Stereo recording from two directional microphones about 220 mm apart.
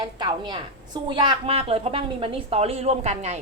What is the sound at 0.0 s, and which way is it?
A woman's voice, 20° right (ahead or behind).